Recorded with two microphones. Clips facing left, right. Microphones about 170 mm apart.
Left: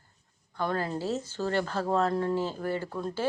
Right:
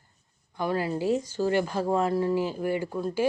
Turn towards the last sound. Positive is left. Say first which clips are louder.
# right 4 dB
turn(degrees=-10)  # may be behind; listen again after turning